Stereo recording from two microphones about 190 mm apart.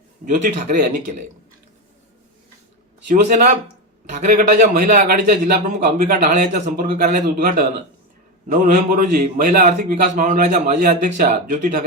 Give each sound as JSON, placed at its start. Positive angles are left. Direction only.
{"t": 0.3, "sound": "a man's voice", "side_deg": -40}
{"t": 3.1, "sound": "a man's voice", "side_deg": -40}